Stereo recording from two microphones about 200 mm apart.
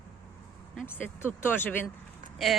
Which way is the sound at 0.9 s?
10° left (ahead or behind).